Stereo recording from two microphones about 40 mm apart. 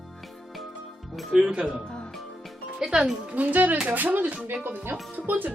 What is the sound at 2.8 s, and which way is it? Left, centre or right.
Speech, centre.